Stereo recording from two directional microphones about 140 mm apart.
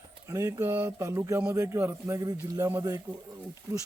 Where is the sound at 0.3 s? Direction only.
20° right (ahead or behind).